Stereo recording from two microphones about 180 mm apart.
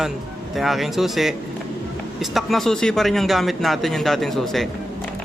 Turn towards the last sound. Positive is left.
turn(degrees=0)  # may be behind; listen again after turning